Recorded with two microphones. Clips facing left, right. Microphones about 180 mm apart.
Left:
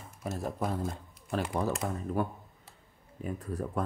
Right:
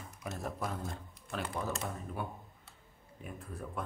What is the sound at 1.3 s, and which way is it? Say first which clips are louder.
Speech: left 6 dB; 35° left (ahead or behind).